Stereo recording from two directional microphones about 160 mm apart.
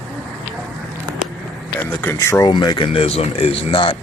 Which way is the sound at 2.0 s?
15° left (ahead or behind).